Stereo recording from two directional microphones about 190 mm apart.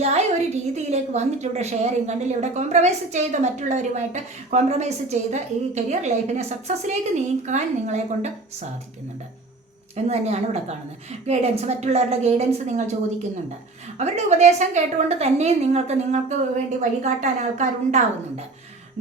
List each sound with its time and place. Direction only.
0.0 s a woman's voice: 35° right (ahead or behind)
9.9 s a woman's voice: 35° right (ahead or behind)
14.0 s a woman's voice: 35° right (ahead or behind)